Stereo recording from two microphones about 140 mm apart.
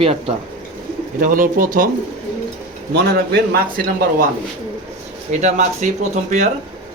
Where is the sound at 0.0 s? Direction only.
45° right (ahead or behind).